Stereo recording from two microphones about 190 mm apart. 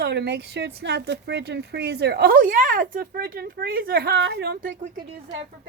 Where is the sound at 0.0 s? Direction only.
60° right (ahead or behind).